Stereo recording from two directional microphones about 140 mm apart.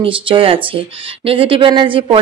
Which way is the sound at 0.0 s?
40° right (ahead or behind).